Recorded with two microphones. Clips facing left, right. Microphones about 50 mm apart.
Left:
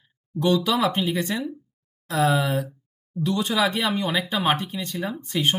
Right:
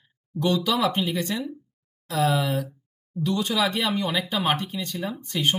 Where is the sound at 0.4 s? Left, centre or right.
Centre.